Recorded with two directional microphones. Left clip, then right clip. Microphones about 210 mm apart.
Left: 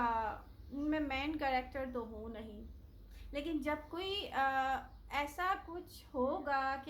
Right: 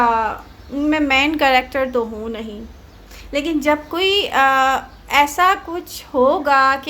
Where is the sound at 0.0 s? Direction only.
25° right (ahead or behind).